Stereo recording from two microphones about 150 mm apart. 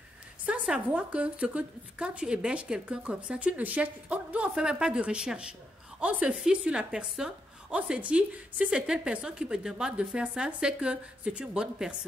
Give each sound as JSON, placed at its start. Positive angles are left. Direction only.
{"t": 0.5, "sound": "a woman's voice", "side_deg": -10}